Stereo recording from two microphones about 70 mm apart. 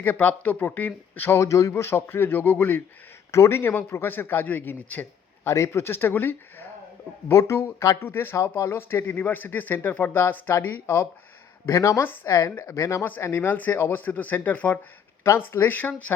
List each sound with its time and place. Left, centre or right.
0.0 s speech: left
1.4 s a man's voice: left
5.5 s a man's voice: left
7.3 s speech: left
8.0 s a man's voice: left
8.4 s a man's voice: left
11.6 s speech: left
12.0 s speech: left
12.3 s speech: left
13.2 s a man's voice: left